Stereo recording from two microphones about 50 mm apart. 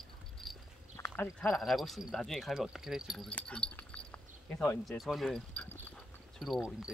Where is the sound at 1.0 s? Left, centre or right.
Left.